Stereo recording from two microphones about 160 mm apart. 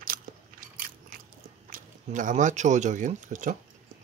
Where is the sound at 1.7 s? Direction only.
55° right (ahead or behind).